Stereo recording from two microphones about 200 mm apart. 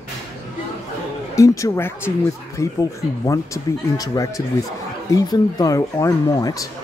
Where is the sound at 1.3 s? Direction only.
15° left (ahead or behind).